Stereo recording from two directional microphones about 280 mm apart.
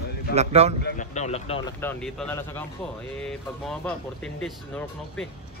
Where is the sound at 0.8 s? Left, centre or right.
Left.